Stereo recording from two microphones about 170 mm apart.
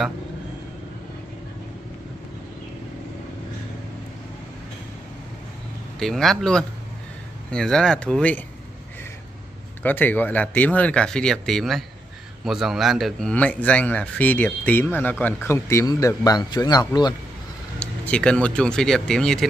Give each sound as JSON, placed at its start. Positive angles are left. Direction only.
{"t": 5.9, "sound": "speech", "side_deg": 0}
{"t": 9.8, "sound": "a man's voice", "side_deg": 10}
{"t": 17.7, "sound": "speech", "side_deg": 5}